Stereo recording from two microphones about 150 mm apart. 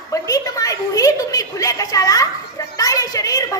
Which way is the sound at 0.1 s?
25° left (ahead or behind).